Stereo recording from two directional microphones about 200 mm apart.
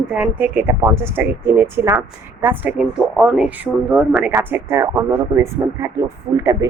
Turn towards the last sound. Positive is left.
turn(degrees=-15)  # may be behind; listen again after turning